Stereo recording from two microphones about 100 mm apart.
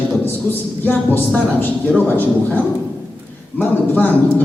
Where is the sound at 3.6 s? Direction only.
15° left (ahead or behind).